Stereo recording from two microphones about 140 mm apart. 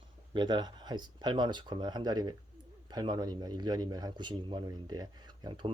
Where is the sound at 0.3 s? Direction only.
30° right (ahead or behind).